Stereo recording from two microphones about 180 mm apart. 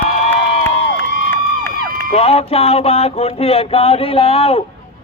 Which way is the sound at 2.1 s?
35° left (ahead or behind).